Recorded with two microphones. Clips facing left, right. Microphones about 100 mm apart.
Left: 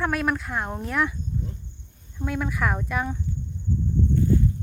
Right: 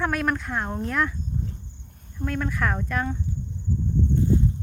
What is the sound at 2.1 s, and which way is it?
Speech, 10° left (ahead or behind).